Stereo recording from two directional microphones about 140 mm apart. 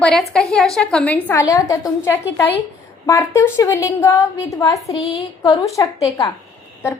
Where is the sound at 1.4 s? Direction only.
25° left (ahead or behind).